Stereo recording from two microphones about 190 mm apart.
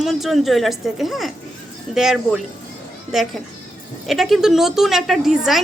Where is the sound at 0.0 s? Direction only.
Centre (ahead or behind).